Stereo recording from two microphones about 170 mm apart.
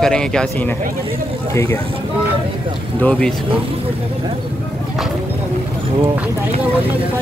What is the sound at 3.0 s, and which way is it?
Speech, 5° left (ahead or behind).